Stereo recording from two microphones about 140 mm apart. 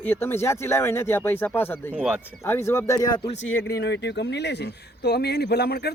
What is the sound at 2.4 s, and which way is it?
Speech, 15° left (ahead or behind).